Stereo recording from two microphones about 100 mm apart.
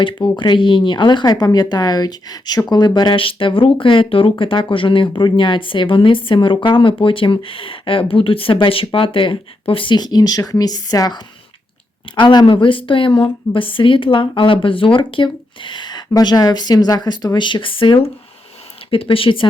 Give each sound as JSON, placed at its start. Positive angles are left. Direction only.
{"t": 0.0, "sound": "speech", "side_deg": 55}